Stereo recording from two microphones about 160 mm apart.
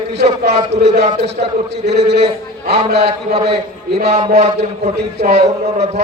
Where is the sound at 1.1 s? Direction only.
40° right (ahead or behind).